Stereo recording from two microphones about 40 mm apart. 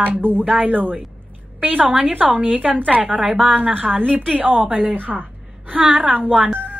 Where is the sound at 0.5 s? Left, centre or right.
Right.